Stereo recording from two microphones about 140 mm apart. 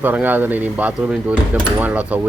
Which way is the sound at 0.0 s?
10° right (ahead or behind).